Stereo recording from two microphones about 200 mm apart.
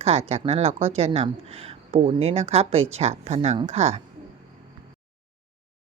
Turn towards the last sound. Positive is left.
turn(degrees=-35)  # may be behind; listen again after turning